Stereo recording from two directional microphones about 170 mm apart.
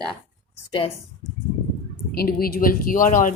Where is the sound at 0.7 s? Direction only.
30° left (ahead or behind).